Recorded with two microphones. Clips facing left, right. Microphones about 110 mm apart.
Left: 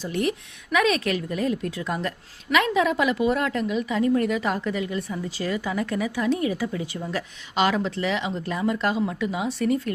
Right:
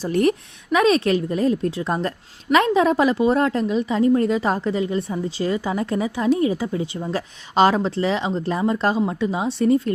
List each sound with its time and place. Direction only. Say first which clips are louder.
0.0 s speech: right 7 dB; 45° right (ahead or behind); by 9.9 s 25° right (ahead or behind)